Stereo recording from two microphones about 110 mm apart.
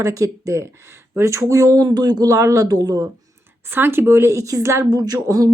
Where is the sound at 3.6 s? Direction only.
20° right (ahead or behind).